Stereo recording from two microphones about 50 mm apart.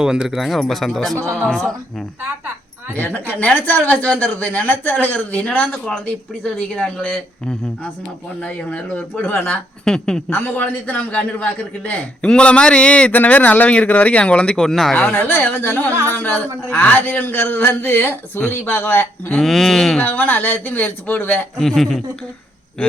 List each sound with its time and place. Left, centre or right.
0.0 s speech: centre
0.3 s a woman's voice: centre
2.9 s a man's voice: left
9.8 s a woman's voice: centre
10.3 s a man's voice: left; by 14.9 s centre
15.1 s speech: left
15.9 s speech: right
16.1 s speech: left
19.4 s speech: centre
20.0 s speech: left
21.6 s a woman's voice: centre
22.8 s a man's voice: left